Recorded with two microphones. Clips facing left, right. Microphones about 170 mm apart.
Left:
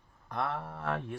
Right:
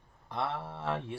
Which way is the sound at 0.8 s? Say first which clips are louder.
Even; 5° right (ahead or behind).